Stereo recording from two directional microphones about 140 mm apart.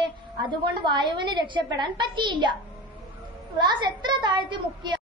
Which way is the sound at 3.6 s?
35° right (ahead or behind).